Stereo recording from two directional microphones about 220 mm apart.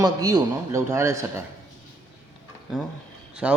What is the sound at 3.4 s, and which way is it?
Speech, 5° right (ahead or behind).